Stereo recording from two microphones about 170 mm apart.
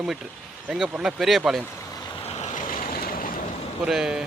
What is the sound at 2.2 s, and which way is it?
Waves, 40° left (ahead or behind).